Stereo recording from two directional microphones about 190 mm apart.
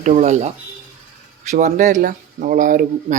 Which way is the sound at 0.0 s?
40° right (ahead or behind).